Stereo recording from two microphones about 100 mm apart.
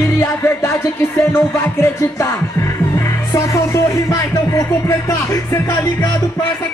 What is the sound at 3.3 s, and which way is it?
Music, 30° left (ahead or behind).